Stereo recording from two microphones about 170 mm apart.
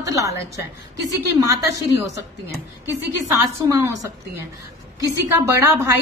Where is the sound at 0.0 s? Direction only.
20° right (ahead or behind).